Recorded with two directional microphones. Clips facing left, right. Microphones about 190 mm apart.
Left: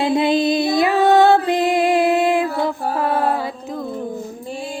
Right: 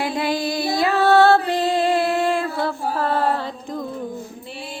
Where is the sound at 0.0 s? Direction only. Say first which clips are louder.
Left 6 dB; 20° left (ahead or behind); by 3.8 s 5° left (ahead or behind).